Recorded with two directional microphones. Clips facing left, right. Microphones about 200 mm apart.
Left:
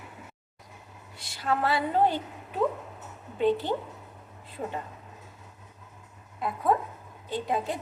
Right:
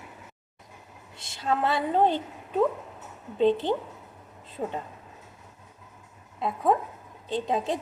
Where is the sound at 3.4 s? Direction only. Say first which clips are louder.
Right 3 dB; 20° right (ahead or behind).